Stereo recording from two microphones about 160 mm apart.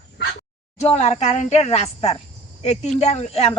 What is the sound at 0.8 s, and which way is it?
A woman's voice, 45° left (ahead or behind).